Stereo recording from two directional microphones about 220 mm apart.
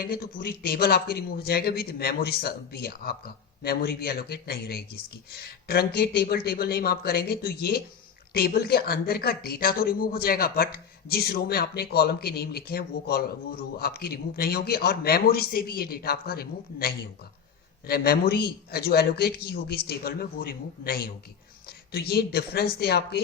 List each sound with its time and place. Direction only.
0.0 s a woman's voice: 40° left (ahead or behind)